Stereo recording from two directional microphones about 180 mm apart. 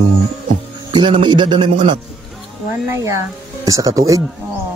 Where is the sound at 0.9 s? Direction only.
25° right (ahead or behind).